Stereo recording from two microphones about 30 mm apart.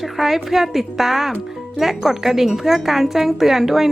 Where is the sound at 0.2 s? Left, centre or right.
Right.